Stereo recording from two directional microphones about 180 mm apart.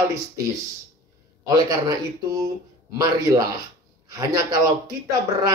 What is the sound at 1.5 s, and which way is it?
Speech, 20° right (ahead or behind).